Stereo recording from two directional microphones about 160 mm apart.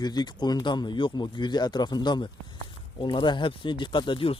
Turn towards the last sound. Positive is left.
turn(degrees=35)  # may be behind; listen again after turning